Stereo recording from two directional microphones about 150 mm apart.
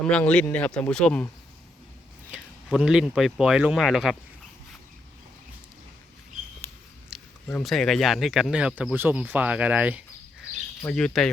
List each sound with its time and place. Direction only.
0.0 s speech: 5° left (ahead or behind)
2.3 s a sound: centre (ahead or behind)
3.2 s speech: centre (ahead or behind)
6.6 s mouse: 15° left (ahead or behind)
7.1 s a sound: 5° right (ahead or behind)
7.6 s speech: centre (ahead or behind)
10.8 s speech: 5° left (ahead or behind)